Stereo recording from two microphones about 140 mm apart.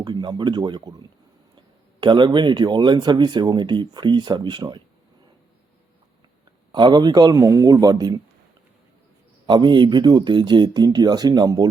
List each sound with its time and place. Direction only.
0.0 s speech: 30° right (ahead or behind)
6.7 s speech: 30° right (ahead or behind)
9.5 s speech: 35° right (ahead or behind)